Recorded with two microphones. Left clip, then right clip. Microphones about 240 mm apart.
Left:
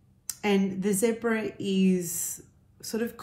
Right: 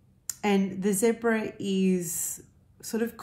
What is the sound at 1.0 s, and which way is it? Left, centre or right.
Speech, right.